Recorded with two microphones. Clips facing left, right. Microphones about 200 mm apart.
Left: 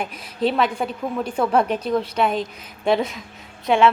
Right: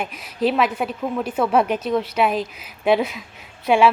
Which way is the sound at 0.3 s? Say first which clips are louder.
Right 1 dB; centre (ahead or behind).